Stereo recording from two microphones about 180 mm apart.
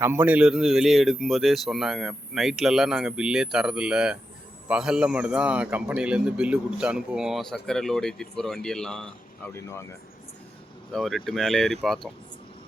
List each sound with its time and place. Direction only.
0.0 s a man's voice: 10° right (ahead or behind)
9.6 s speech: 15° left (ahead or behind)
10.9 s a man's voice: centre (ahead or behind)